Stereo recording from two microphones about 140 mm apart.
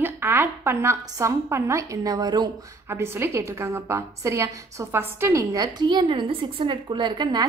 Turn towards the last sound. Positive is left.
turn(degrees=-30)  # may be behind; listen again after turning